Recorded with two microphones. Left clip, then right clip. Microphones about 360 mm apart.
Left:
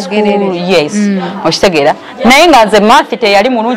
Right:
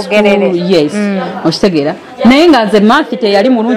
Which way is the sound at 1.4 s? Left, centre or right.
Left.